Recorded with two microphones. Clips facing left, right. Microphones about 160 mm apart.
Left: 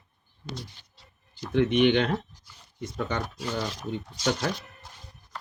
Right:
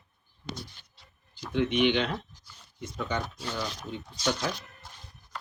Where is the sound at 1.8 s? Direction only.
50° left (ahead or behind).